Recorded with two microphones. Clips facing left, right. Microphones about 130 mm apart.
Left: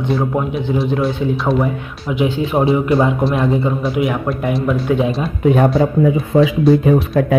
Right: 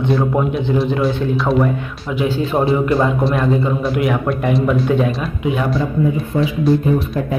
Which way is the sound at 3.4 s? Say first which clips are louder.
Left 1 dB; 20° left (ahead or behind).